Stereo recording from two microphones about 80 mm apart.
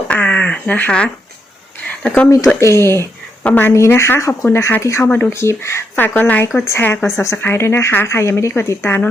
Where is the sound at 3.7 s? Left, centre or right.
Left.